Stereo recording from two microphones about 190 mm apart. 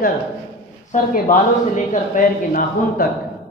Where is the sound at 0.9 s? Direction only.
40° left (ahead or behind).